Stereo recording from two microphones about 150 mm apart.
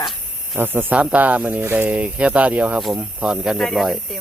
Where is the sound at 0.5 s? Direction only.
15° right (ahead or behind).